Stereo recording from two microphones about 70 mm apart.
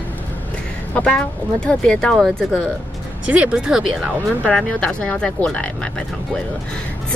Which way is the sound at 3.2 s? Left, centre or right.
Centre.